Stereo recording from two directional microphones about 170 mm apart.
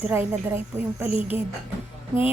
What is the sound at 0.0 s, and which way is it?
A woman's voice, 10° right (ahead or behind).